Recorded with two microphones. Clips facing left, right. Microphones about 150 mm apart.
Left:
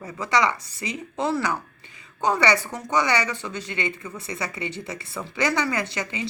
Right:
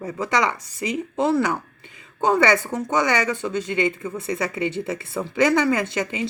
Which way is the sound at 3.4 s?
20° right (ahead or behind).